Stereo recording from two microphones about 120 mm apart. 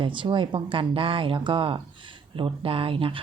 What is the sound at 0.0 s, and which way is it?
Speech, 45° right (ahead or behind).